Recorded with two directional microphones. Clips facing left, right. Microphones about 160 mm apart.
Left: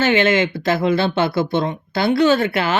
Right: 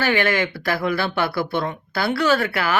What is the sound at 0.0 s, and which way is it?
Speech, 20° left (ahead or behind).